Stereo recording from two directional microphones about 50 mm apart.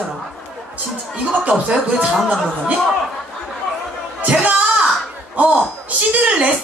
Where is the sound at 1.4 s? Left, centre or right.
Right.